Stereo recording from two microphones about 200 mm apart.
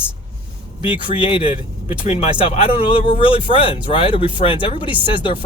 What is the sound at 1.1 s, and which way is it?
Speech, 25° left (ahead or behind).